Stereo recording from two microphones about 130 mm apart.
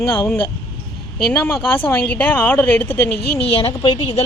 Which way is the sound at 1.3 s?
15° left (ahead or behind).